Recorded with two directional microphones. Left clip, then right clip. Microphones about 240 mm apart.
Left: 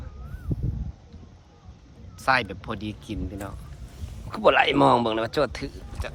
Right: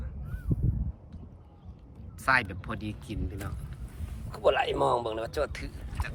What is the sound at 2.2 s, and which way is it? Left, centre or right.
Speech, centre.